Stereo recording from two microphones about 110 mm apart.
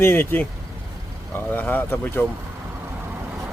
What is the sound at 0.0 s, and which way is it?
Speech, 20° left (ahead or behind).